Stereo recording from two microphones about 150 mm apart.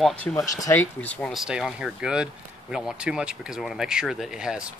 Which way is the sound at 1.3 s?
Centre (ahead or behind).